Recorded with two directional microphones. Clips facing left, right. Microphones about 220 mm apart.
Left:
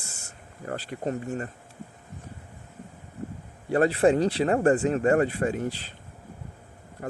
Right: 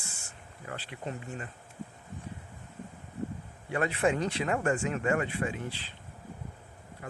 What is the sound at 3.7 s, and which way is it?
Speech, 35° left (ahead or behind).